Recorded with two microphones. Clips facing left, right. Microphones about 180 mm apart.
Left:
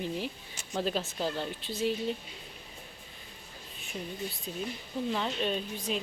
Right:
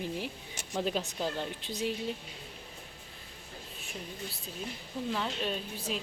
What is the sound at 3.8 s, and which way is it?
Speech, centre (ahead or behind).